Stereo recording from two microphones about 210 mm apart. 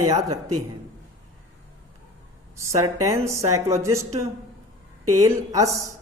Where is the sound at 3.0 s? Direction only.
15° right (ahead or behind).